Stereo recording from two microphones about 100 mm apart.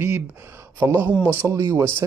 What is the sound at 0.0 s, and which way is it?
Speech, 25° right (ahead or behind).